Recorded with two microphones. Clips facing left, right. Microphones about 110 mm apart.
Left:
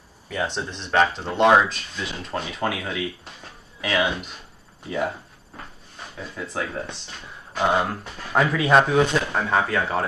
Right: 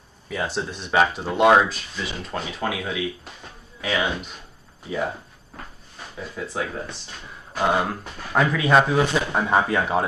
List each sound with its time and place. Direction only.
0.3 s speech: centre (ahead or behind)
6.1 s speech: 5° right (ahead or behind)
9.4 s speech: 20° right (ahead or behind)